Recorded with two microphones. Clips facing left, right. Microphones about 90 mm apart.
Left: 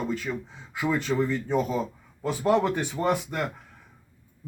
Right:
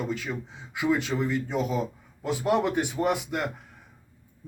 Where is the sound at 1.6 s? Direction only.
15° right (ahead or behind).